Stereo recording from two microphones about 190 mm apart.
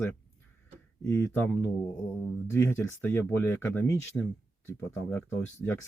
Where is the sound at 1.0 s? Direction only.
10° left (ahead or behind).